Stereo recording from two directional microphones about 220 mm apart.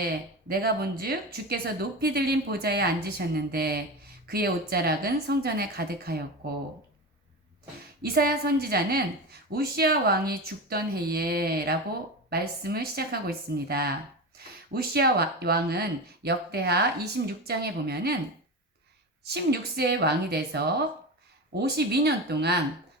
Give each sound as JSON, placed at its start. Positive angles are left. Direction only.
{"t": 0.0, "sound": "speech", "side_deg": -45}
{"t": 8.1, "sound": "speech", "side_deg": -45}
{"t": 19.2, "sound": "speech", "side_deg": -45}
{"t": 21.6, "sound": "speech", "side_deg": -45}